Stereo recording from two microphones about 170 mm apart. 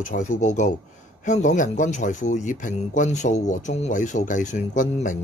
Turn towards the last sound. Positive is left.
turn(degrees=45)  # may be behind; listen again after turning